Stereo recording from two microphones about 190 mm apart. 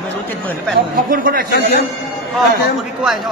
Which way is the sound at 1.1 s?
50° right (ahead or behind).